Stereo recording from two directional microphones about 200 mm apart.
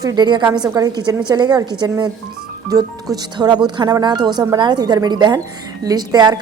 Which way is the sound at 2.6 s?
20° right (ahead or behind).